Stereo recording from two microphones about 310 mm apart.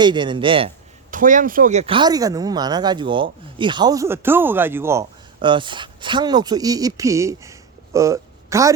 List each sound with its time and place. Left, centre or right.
0.0 s speech: centre